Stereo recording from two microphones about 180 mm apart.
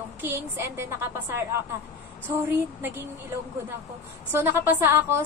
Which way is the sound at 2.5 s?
10° right (ahead or behind).